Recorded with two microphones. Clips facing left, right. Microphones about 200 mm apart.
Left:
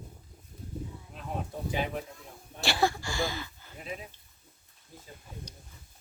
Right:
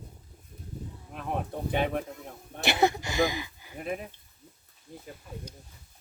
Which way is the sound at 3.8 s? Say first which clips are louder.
Right 6 dB; 55° right (ahead or behind).